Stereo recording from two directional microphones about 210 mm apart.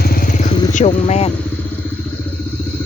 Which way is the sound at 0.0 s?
45° left (ahead or behind).